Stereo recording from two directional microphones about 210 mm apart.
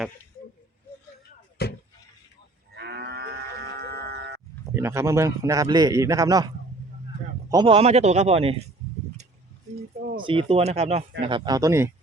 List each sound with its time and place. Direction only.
1.6 s a sound: 50° left (ahead or behind)
2.7 s livestock: 50° right (ahead or behind)
4.6 s a man's voice: 10° right (ahead or behind)
7.5 s a man's voice: 25° right (ahead or behind)
10.0 s bird: 45° right (ahead or behind)
10.2 s a man's voice: 25° right (ahead or behind)